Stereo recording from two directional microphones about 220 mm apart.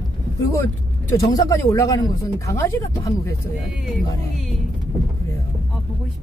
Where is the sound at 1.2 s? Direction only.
15° left (ahead or behind).